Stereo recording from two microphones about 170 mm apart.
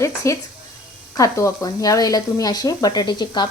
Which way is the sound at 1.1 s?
20° left (ahead or behind).